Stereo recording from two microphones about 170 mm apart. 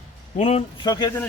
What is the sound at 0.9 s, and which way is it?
Speech, 20° left (ahead or behind).